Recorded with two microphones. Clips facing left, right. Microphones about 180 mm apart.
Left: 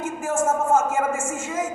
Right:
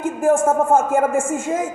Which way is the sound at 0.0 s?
55° right (ahead or behind).